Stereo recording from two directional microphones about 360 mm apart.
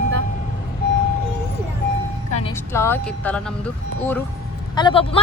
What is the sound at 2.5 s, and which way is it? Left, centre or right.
Speech, centre.